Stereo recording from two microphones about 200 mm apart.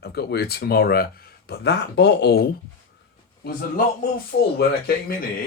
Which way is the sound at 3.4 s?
45° left (ahead or behind).